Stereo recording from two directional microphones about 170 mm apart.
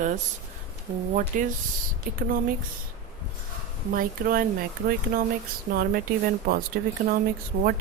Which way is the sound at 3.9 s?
60° right (ahead or behind).